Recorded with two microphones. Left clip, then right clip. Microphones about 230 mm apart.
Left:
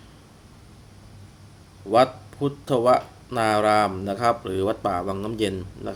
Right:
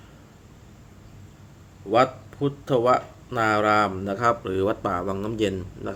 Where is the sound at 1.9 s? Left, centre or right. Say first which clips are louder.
Left 2 dB; centre.